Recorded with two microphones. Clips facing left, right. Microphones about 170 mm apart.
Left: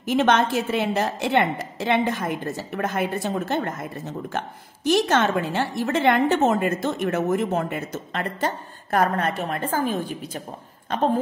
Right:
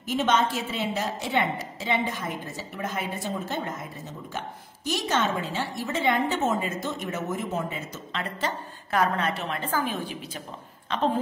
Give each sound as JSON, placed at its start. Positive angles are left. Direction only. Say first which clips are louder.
{"t": 0.0, "sound": "a woman's voice", "louder": "left 5 dB", "side_deg": 70}